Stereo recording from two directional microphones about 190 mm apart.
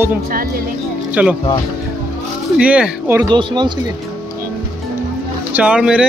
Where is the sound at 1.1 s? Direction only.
5° right (ahead or behind).